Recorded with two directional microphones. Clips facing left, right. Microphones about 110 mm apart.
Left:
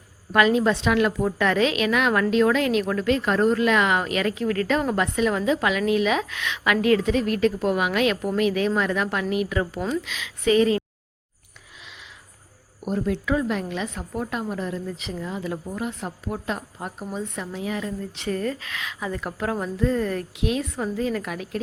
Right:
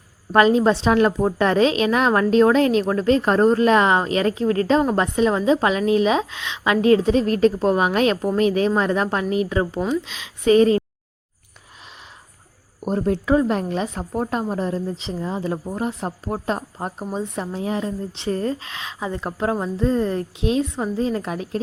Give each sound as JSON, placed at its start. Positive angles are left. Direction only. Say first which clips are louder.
{"t": 0.3, "sound": "a woman's voice", "louder": "right 4 dB", "side_deg": -35}
{"t": 12.8, "sound": "a woman's voice", "louder": "right 4 dB", "side_deg": -40}